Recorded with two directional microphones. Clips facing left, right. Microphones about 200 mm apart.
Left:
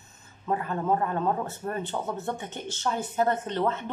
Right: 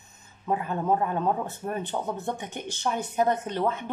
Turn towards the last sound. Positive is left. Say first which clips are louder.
# even
turn(degrees=-10)  # may be behind; listen again after turning